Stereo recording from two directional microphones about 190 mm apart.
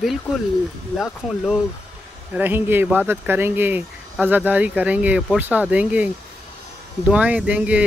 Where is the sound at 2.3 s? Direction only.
10° right (ahead or behind).